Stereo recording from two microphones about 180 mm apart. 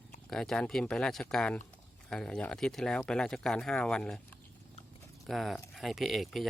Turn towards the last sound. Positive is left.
turn(degrees=0)  # may be behind; listen again after turning